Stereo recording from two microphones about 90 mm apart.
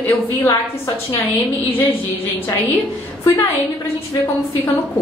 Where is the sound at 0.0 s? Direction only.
20° left (ahead or behind).